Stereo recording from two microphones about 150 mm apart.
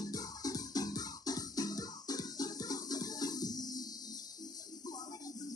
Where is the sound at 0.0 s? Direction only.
25° left (ahead or behind).